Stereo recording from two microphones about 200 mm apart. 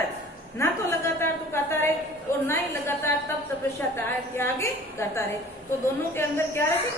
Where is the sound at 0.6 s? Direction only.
15° left (ahead or behind).